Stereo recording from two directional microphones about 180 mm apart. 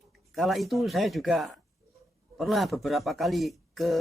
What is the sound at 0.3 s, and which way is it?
Speech, centre (ahead or behind).